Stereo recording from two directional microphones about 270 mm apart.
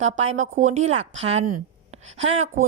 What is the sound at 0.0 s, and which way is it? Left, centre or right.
A woman's voice, right.